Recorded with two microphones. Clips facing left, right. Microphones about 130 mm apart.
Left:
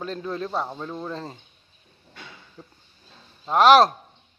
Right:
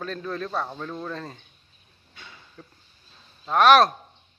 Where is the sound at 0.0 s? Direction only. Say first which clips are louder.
Left 1 dB; 20° left (ahead or behind).